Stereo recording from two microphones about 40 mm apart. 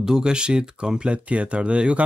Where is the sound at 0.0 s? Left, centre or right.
Centre.